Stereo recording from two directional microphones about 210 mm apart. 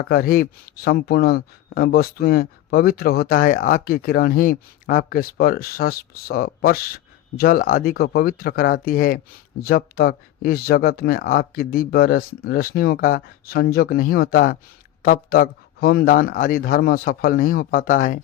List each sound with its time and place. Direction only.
0.0 s a man's voice: 45° left (ahead or behind)